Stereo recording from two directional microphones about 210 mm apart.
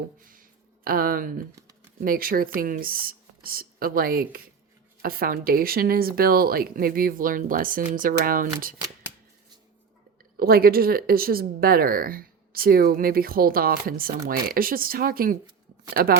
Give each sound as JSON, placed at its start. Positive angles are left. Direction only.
{"t": 0.2, "sound": "speech", "side_deg": -40}
{"t": 10.3, "sound": "speech", "side_deg": -45}